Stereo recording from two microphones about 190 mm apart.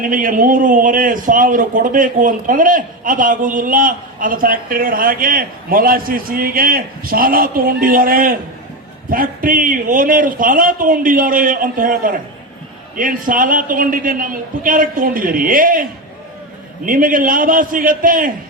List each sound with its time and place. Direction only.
0.0 s a man's voice: 45° right (ahead or behind)